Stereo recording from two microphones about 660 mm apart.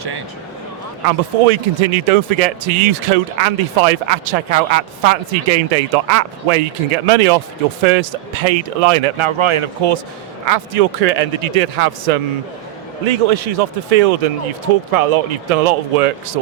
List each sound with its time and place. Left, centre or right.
1.5 s speech: right
7.9 s speech: right
10.4 s speech: right
13.1 s speech: right